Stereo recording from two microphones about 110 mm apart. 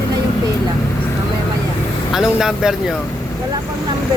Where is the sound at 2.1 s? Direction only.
5° right (ahead or behind).